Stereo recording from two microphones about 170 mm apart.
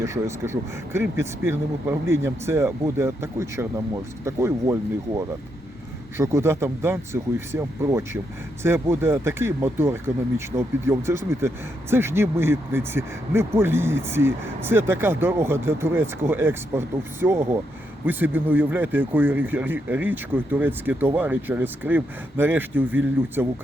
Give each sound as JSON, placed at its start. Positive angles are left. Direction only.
{"t": 0.0, "sound": "speech", "side_deg": -15}